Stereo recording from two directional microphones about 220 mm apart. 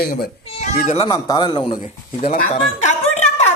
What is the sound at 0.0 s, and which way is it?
Speech, 45° left (ahead or behind).